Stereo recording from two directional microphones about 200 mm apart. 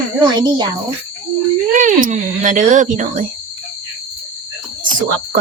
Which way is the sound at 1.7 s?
40° right (ahead or behind).